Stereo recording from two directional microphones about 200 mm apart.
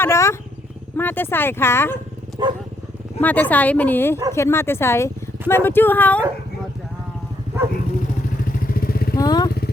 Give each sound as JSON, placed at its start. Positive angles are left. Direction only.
{"t": 0.0, "sound": "speech", "side_deg": 15}
{"t": 2.4, "sound": "speech", "side_deg": -20}
{"t": 3.2, "sound": "speech", "side_deg": 10}
{"t": 8.7, "sound": "vehicle", "side_deg": 50}
{"t": 9.1, "sound": "vehicle", "side_deg": 20}